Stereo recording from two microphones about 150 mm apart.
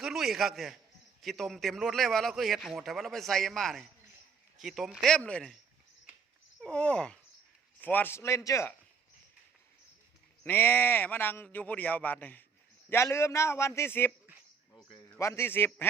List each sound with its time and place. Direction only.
0.0 s a man's voice: centre (ahead or behind)
6.6 s speech: 5° left (ahead or behind)
10.4 s speech: 15° left (ahead or behind)
15.1 s speech: 15° left (ahead or behind)